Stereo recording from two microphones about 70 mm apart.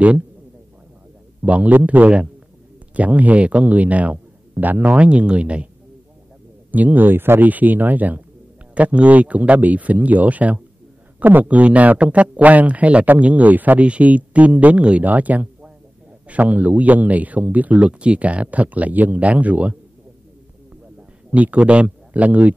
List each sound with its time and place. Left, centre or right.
1.4 s speech: centre
6.7 s speech: right
21.3 s speech: centre